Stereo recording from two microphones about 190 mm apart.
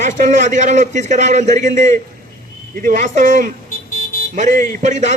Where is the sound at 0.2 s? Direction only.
40° right (ahead or behind).